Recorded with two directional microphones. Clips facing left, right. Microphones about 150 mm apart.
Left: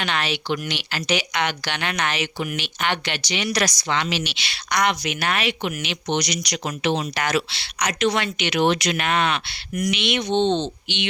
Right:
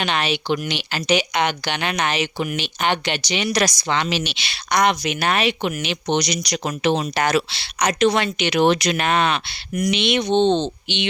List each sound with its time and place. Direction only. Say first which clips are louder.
0.0 s a woman's voice: right 3 dB; 20° right (ahead or behind)